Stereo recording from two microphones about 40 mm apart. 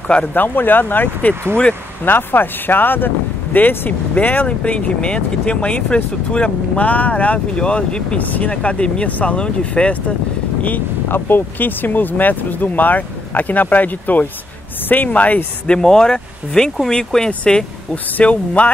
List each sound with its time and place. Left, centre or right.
0.2 s speech: left
3.5 s speech: left
6.9 s speech: left
7.3 s speech: left
8.2 s speech: left
8.5 s speech: left
11.1 s speech: left
15.6 s speech: left
18.2 s speech: left